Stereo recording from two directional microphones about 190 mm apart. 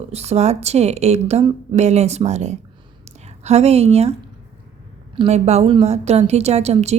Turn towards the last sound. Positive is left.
turn(degrees=-35)  # may be behind; listen again after turning